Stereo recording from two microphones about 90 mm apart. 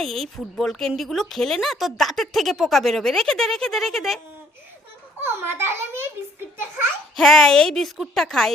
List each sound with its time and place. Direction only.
0.0 s speech: centre (ahead or behind)
5.2 s a child's voice: 25° right (ahead or behind)
7.2 s speech: 5° left (ahead or behind)